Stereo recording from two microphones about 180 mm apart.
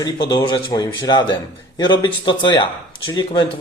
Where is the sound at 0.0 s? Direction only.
25° left (ahead or behind).